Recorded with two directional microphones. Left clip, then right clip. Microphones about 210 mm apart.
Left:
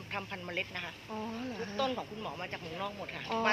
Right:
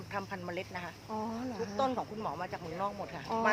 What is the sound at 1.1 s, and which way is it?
Speech, 5° right (ahead or behind).